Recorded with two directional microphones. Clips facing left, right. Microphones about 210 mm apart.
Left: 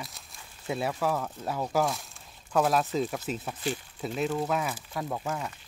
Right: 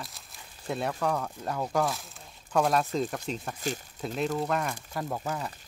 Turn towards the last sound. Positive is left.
turn(degrees=0)  # may be behind; listen again after turning